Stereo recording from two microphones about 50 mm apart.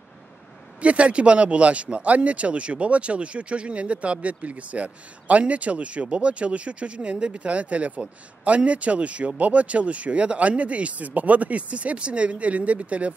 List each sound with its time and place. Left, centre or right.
0.7 s speech: right